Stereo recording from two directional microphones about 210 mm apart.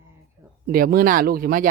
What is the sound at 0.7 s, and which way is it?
Speech, 45° right (ahead or behind).